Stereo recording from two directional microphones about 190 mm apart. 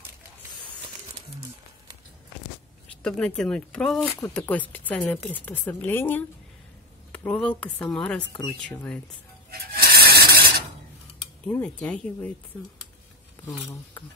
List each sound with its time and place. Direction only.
3.0 s speech: 5° left (ahead or behind)
9.5 s a sound: 50° right (ahead or behind)
11.4 s speech: 5° left (ahead or behind)